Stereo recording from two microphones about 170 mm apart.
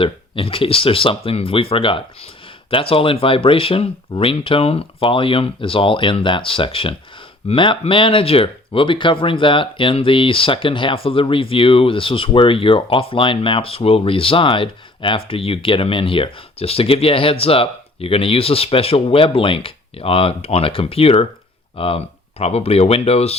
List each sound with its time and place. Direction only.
0.0 s speech: 30° left (ahead or behind)